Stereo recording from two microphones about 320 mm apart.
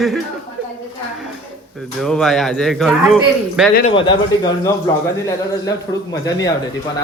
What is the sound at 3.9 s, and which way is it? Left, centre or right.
Speech, centre.